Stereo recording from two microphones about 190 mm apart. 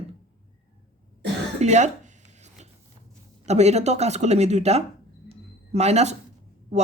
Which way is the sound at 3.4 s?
35° right (ahead or behind).